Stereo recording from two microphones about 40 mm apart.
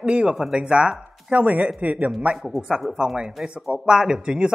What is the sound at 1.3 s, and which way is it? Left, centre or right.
Speech, right.